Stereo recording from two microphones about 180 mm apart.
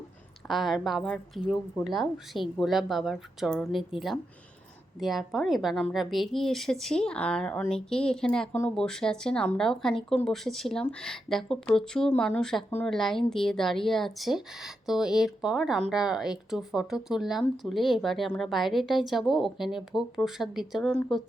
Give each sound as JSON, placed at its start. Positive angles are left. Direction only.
{"t": 0.4, "sound": "speech", "side_deg": 0}